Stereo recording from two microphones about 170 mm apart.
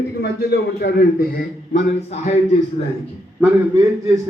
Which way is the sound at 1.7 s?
40° left (ahead or behind).